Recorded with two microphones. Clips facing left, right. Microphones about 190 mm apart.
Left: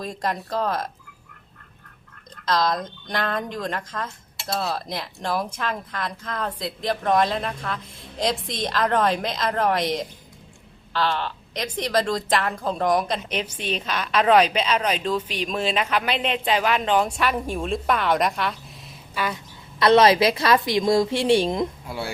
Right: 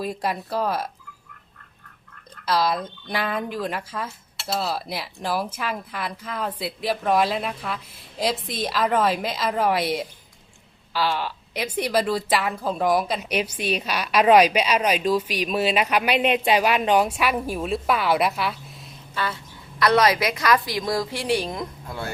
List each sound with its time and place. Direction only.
0.0 s a woman's voice: 10° right (ahead or behind)
2.5 s a woman's voice: 10° right (ahead or behind)
19.1 s speech: 15° left (ahead or behind)
19.8 s a woman's voice: 25° left (ahead or behind)
21.8 s speech: 10° left (ahead or behind)